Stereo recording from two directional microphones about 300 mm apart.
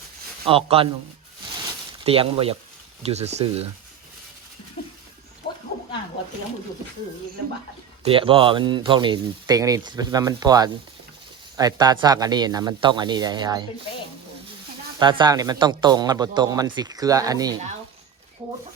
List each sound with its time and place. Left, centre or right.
0.4 s speech: centre
2.0 s speech: centre
4.8 s a sound: centre
8.0 s speech: centre
14.9 s speech: centre